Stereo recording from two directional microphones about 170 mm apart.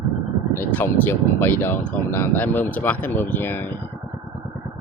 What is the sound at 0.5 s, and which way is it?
Speech, 10° left (ahead or behind).